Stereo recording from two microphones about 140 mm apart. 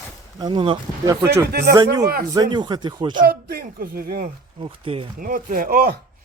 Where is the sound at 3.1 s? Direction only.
90° right.